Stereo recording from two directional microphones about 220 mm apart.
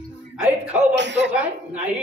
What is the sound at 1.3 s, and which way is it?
Speech, 5° right (ahead or behind).